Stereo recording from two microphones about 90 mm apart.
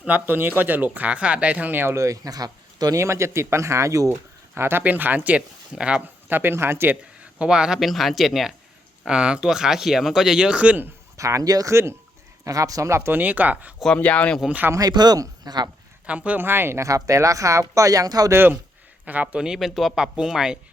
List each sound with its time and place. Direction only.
0.0 s speech: 20° right (ahead or behind)
6.2 s speech: 25° right (ahead or behind)
7.3 s speech: 10° right (ahead or behind)
11.2 s speech: 35° right (ahead or behind)
11.7 s speech: 30° right (ahead or behind)
12.5 s speech: 40° right (ahead or behind); by 13.7 s 15° right (ahead or behind)
13.9 s speech: 15° left (ahead or behind)
14.7 s speech: 45° right (ahead or behind)
16.0 s speech: 15° right (ahead or behind); by 18.3 s 45° right (ahead or behind)
19.0 s speech: 15° right (ahead or behind)